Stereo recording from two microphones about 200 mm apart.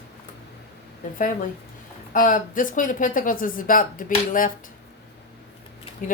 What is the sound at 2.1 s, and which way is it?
Speech, 40° left (ahead or behind).